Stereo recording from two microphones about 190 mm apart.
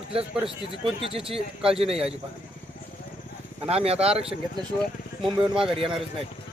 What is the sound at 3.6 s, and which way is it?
Speech, 30° right (ahead or behind).